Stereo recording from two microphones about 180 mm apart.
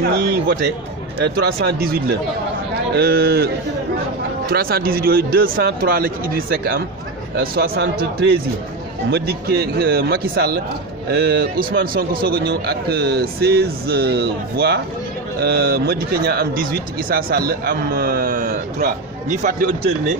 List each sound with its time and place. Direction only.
0.5 s speech: 70° right (ahead or behind); by 19.7 s 45° right (ahead or behind)